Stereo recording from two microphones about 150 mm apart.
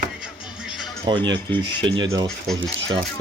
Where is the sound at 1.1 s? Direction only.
30° right (ahead or behind).